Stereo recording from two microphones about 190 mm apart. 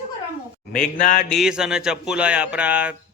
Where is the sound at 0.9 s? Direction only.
45° left (ahead or behind).